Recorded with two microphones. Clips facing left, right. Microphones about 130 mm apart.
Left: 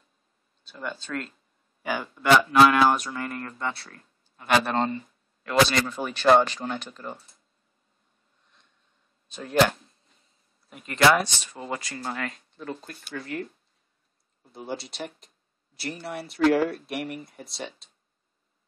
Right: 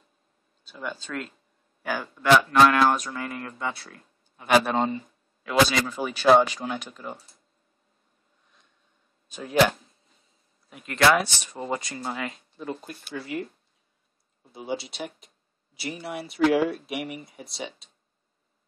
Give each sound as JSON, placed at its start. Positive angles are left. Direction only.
{"t": 0.7, "sound": "speech", "side_deg": -5}
{"t": 9.3, "sound": "speech", "side_deg": -5}
{"t": 11.4, "sound": "speech", "side_deg": -20}
{"t": 12.0, "sound": "speech", "side_deg": -5}